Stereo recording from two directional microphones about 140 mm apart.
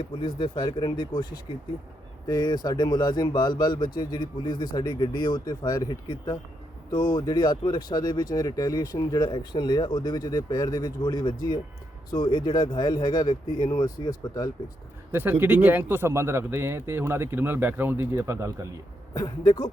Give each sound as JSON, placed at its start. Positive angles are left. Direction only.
{"t": 0.0, "sound": "speech", "side_deg": 35}
{"t": 15.1, "sound": "speech", "side_deg": -15}
{"t": 19.1, "sound": "speech", "side_deg": 25}